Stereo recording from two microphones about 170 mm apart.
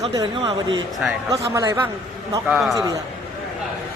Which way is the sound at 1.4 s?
20° right (ahead or behind).